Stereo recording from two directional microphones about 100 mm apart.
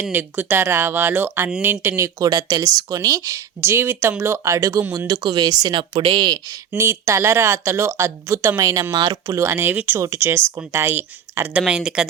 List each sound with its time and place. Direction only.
0.1 s speech: 20° right (ahead or behind); by 6.6 s 45° right (ahead or behind)
6.7 s speech: 25° right (ahead or behind)
11.6 s speech: 5° right (ahead or behind)